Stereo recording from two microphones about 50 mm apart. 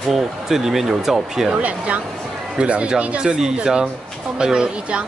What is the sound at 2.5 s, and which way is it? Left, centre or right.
Speech, right.